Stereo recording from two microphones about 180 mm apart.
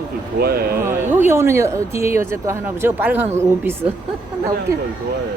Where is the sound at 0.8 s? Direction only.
10° right (ahead or behind).